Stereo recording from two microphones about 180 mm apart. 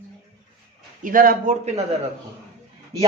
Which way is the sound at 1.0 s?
50° right (ahead or behind).